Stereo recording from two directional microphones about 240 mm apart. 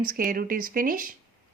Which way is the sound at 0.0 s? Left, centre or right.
Right.